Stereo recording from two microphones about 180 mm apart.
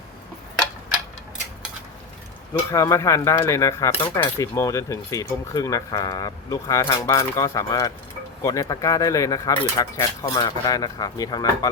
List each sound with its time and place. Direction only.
2.7 s speech: 15° left (ahead or behind)